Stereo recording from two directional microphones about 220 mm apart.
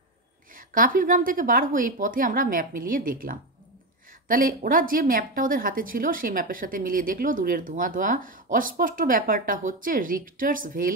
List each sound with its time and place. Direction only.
0.6 s a woman's voice: 40° right (ahead or behind)